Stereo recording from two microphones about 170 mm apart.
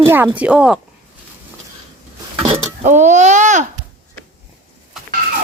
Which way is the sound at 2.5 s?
45° right (ahead or behind).